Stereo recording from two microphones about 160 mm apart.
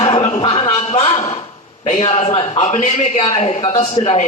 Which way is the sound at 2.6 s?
50° left (ahead or behind).